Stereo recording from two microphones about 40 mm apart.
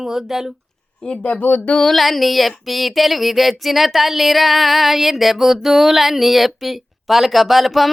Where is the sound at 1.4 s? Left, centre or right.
Left.